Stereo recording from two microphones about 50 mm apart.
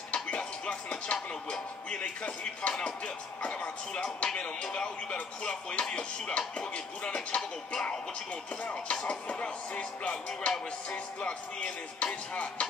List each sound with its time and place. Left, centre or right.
0.1 s music: centre
1.5 s speech: left
9.0 s speech: left